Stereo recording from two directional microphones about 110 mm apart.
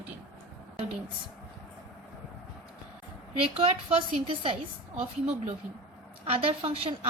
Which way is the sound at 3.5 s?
60° right (ahead or behind).